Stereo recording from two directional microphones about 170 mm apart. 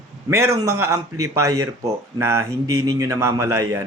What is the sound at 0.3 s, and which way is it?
Speech, 15° right (ahead or behind).